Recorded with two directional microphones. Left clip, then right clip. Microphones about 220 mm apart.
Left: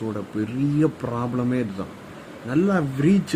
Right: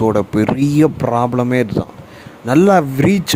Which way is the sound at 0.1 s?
40° right (ahead or behind).